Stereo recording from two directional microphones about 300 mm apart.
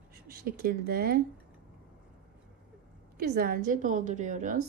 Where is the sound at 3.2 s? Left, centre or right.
Right.